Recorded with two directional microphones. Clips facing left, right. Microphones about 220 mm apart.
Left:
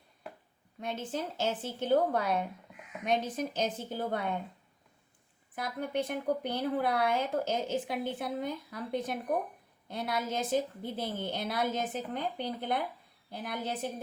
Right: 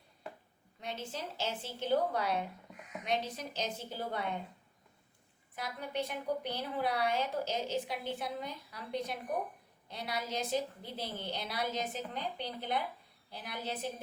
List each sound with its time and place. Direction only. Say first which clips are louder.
0.8 s speech: left 6 dB; 50° left (ahead or behind)
5.5 s speech: left 5 dB; 50° left (ahead or behind)